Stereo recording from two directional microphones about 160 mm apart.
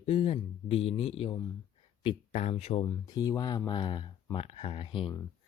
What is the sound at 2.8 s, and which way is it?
Speech, 25° left (ahead or behind).